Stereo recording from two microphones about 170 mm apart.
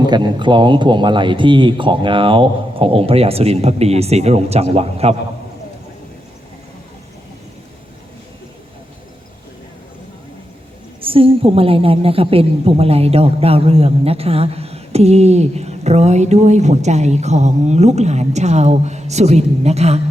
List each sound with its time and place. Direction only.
0.0 s a woman's voice: 25° right (ahead or behind)
11.0 s a woman's voice: 35° right (ahead or behind)